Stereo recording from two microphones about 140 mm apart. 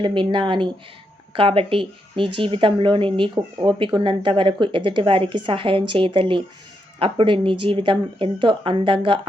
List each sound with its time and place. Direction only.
0.0 s speech: 35° right (ahead or behind)